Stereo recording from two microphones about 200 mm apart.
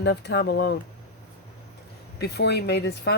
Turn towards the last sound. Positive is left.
turn(degrees=55)  # may be behind; listen again after turning